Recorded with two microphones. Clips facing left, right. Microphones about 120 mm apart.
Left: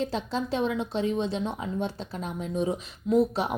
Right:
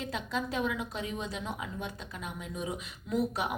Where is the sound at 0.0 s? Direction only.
30° left (ahead or behind).